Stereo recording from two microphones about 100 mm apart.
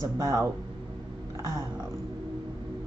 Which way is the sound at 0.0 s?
35° right (ahead or behind).